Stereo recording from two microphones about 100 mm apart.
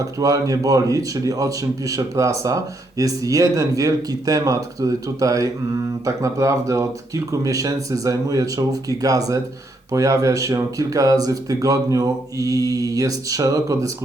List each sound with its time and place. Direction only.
0.0 s a man's voice: 35° right (ahead or behind)